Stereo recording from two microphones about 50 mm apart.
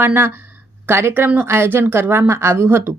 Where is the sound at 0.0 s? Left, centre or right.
Right.